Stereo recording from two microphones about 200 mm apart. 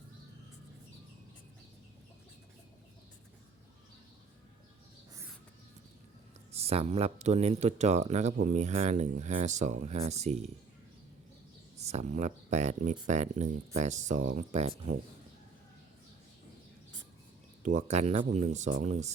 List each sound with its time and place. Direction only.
6.5 s speech: 30° right (ahead or behind)
11.9 s speech: 35° right (ahead or behind)
17.7 s speech: 35° right (ahead or behind)